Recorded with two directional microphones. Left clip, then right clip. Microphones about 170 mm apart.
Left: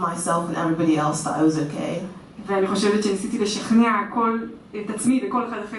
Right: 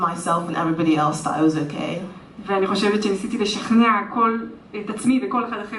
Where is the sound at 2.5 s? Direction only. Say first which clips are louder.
Right 1 dB; 15° right (ahead or behind).